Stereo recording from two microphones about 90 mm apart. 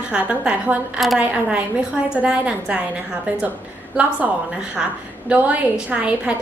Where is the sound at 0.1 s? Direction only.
15° right (ahead or behind).